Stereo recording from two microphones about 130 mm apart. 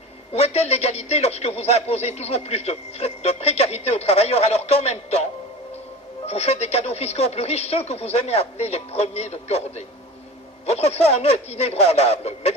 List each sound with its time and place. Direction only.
0.3 s a man's voice: 55° left (ahead or behind)
6.2 s a man's voice: 55° left (ahead or behind)